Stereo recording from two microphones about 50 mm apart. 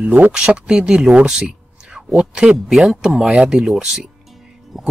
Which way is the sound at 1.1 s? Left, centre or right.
Centre.